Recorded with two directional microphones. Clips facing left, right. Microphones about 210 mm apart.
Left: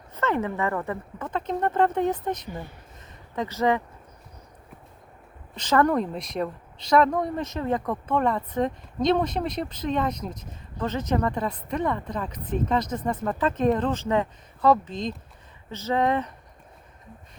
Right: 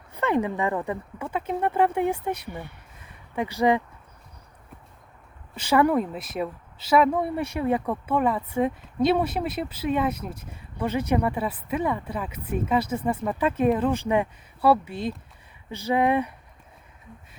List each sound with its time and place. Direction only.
0.1 s a woman's voice: 15° right (ahead or behind)
3.0 s a sound: 10° right (ahead or behind)
5.5 s a woman's voice: 10° right (ahead or behind)